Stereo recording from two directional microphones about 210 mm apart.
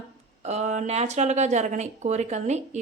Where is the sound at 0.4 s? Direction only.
35° right (ahead or behind).